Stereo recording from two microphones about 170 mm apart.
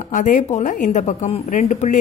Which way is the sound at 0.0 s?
50° left (ahead or behind).